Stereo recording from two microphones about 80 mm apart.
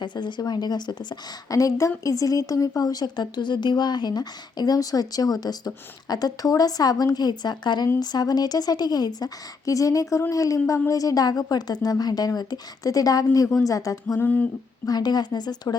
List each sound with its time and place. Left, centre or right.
0.0 s speech: left
1.5 s a woman's voice: left
14.2 s a sound: left
14.8 s speech: left